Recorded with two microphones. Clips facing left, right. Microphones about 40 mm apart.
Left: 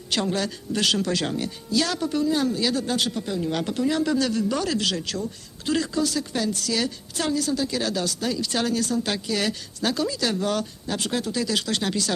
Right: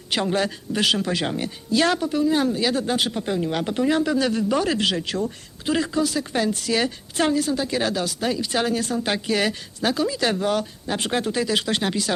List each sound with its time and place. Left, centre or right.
0.1 s speech: right
1.7 s speech: right
2.0 s speech: centre
2.3 s speech: right
3.5 s speech: centre
3.8 s speech: right
4.0 s speech: centre
10.9 s speech: right